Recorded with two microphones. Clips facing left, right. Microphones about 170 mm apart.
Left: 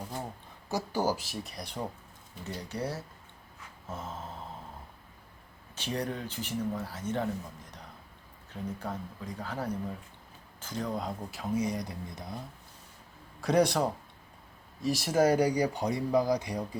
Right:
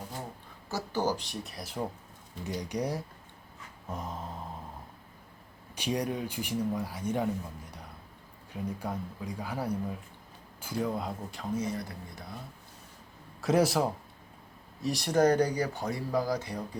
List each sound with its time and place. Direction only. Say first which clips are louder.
0.7 s speech: left 1 dB; 15° left (ahead or behind); by 1.8 s centre (ahead or behind)
2.4 s speech: right 3 dB; 15° right (ahead or behind)
5.7 s speech: right 3 dB; 15° right (ahead or behind); by 12.2 s 15° left (ahead or behind)
13.4 s speech: even; centre (ahead or behind); by 16.6 s 15° left (ahead or behind)